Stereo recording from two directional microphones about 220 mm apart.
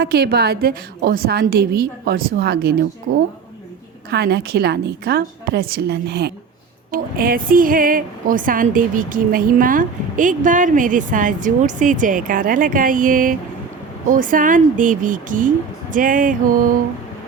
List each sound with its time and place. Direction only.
0.0 s a woman's voice: 45° right (ahead or behind)
4.1 s a woman's voice: 45° right (ahead or behind)